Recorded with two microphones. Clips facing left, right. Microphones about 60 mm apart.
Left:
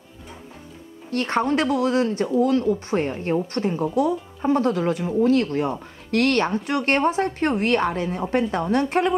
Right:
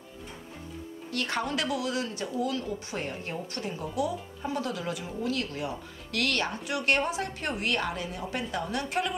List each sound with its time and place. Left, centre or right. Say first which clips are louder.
1.1 s speech: left 9 dB; left